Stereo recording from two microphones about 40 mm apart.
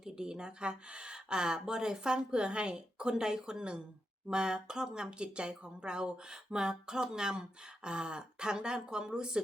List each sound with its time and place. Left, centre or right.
0.0 s speech: centre